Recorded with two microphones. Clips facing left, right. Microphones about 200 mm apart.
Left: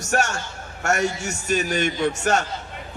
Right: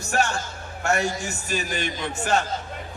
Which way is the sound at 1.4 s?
50° left (ahead or behind).